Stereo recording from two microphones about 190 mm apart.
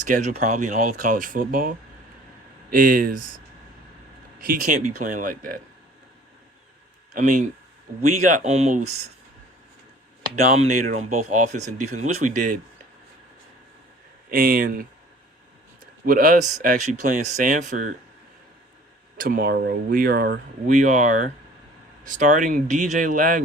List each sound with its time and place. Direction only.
0.1 s speech: 40° right (ahead or behind)
4.4 s speech: 40° right (ahead or behind)
7.1 s speech: 45° right (ahead or behind)
10.6 s speech: 35° right (ahead or behind)
14.3 s speech: 50° right (ahead or behind)
16.0 s speech: 45° right (ahead or behind)
19.1 s speech: 45° right (ahead or behind)